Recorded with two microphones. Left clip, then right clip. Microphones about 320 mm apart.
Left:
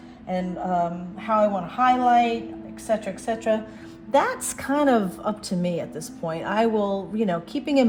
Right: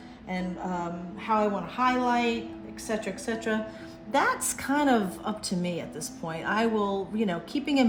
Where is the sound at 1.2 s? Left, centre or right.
Centre.